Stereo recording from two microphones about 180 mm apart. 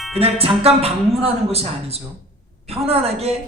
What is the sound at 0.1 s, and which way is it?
A man's voice, 35° right (ahead or behind).